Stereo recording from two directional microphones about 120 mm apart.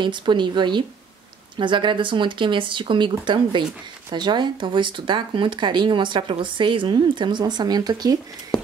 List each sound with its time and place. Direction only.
0.0 s speech: 40° right (ahead or behind)